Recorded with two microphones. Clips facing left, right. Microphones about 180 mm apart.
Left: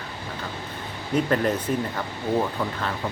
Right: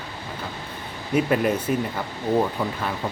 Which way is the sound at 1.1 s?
10° right (ahead or behind).